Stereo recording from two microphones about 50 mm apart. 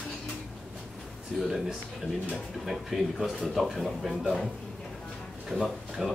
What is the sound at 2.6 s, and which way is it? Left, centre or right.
Speech, centre.